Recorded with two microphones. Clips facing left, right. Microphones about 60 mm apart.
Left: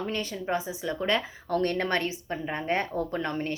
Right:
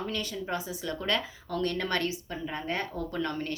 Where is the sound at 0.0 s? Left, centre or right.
Left.